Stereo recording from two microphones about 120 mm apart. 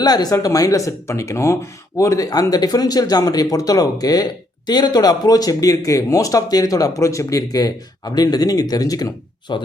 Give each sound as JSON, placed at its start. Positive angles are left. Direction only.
{"t": 0.0, "sound": "speech", "side_deg": 35}